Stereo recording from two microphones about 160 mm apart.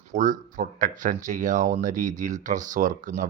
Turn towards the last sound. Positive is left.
turn(degrees=-55)  # may be behind; listen again after turning